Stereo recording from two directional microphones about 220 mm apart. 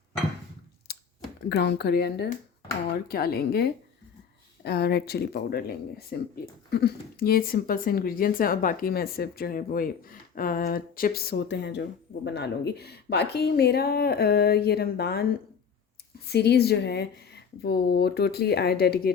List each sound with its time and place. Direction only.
1.5 s speech: 50° left (ahead or behind)
16.3 s speech: 50° left (ahead or behind)